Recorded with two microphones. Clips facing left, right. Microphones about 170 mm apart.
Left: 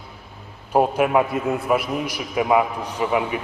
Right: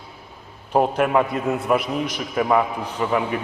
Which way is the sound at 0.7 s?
10° left (ahead or behind).